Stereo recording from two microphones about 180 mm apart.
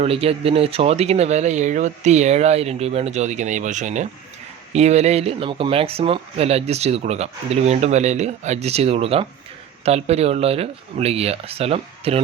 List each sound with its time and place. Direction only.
0.0 s speech: 35° right (ahead or behind)